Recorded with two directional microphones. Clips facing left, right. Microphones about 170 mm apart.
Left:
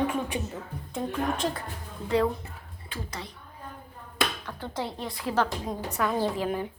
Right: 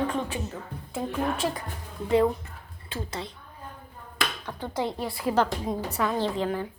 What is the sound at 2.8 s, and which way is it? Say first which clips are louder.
Speech: right 4 dB; 25° right (ahead or behind).